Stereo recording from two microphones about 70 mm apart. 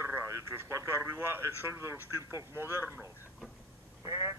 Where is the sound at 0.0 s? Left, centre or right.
Right.